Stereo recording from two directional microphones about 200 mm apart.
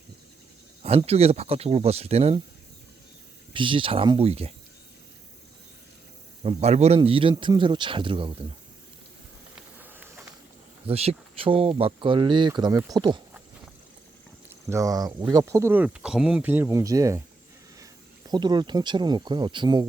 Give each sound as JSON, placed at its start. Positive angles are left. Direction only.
{"t": 0.8, "sound": "speech", "side_deg": -30}
{"t": 3.5, "sound": "speech", "side_deg": -25}
{"t": 6.4, "sound": "speech", "side_deg": -30}
{"t": 9.8, "sound": "a sound", "side_deg": -10}
{"t": 10.8, "sound": "speech", "side_deg": -30}
{"t": 14.7, "sound": "speech", "side_deg": -15}
{"t": 18.3, "sound": "speech", "side_deg": -20}